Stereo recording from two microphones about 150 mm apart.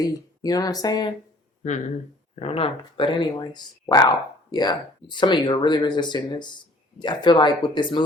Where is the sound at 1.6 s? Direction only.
50° left (ahead or behind).